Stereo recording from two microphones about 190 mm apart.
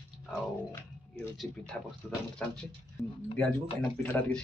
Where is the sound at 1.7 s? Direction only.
5° left (ahead or behind).